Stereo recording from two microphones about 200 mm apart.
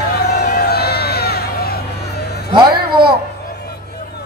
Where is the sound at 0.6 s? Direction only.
50° left (ahead or behind).